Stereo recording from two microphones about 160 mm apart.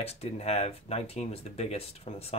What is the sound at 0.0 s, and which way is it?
Speech, 40° left (ahead or behind).